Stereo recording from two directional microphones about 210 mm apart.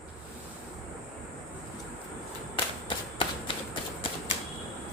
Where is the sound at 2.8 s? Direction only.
25° left (ahead or behind).